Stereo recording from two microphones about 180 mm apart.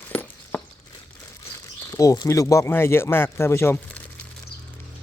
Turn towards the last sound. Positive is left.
turn(degrees=15)  # may be behind; listen again after turning